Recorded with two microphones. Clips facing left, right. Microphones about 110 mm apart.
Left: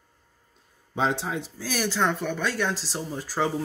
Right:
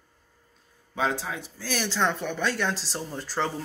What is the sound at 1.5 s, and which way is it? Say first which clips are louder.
Speech: even; 5° left (ahead or behind).